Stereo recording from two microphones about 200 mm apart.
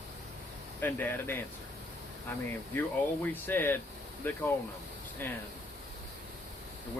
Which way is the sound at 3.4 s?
10° left (ahead or behind).